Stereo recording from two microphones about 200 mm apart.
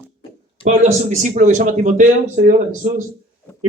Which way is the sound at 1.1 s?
35° right (ahead or behind).